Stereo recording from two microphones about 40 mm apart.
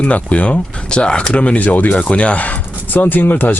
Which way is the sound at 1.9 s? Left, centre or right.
Left.